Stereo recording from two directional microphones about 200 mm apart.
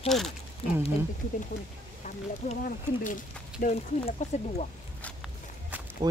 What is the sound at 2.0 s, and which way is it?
Speech, 40° left (ahead or behind).